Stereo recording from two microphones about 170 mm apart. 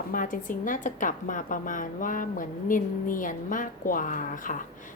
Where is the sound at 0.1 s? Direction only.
50° left (ahead or behind).